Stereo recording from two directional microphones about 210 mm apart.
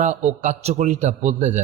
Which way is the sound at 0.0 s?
35° right (ahead or behind).